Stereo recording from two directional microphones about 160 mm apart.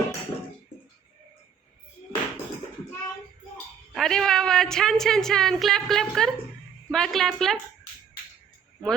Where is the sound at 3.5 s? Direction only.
Centre (ahead or behind).